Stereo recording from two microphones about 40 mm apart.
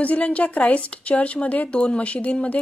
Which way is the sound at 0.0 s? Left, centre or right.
Left.